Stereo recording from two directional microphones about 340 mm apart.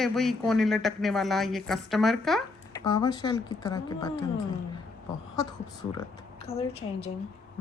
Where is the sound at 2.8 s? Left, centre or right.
Centre.